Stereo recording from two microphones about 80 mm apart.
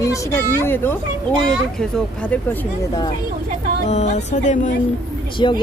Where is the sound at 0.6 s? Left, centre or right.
Left.